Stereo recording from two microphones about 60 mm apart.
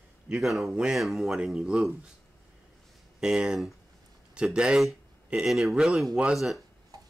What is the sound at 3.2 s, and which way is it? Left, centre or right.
Speech, centre.